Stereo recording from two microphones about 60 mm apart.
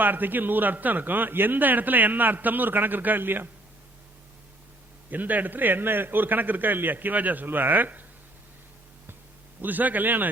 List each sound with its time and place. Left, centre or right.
0.0 s a man's voice: right
5.1 s a man's voice: right
9.6 s a man's voice: right